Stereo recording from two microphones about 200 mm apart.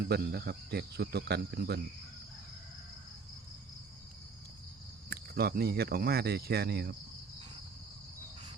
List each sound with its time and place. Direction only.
0.0 s speech: 50° right (ahead or behind)
5.0 s speech: 50° right (ahead or behind)